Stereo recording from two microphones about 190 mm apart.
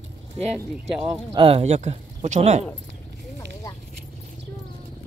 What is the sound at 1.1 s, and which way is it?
Speech, 30° right (ahead or behind).